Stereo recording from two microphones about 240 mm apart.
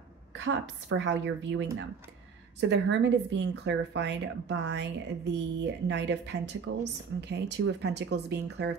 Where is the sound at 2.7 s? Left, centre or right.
Right.